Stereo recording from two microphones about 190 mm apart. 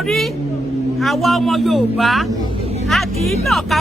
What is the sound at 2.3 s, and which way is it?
Speech, 25° right (ahead or behind).